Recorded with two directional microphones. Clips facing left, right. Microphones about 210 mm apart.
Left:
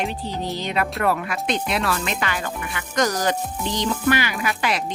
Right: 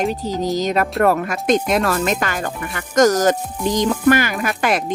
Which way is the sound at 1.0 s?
45° right (ahead or behind).